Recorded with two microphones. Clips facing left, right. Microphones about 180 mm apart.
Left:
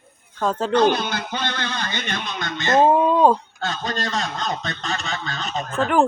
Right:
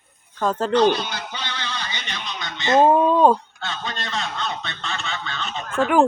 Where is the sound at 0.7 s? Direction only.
55° left (ahead or behind).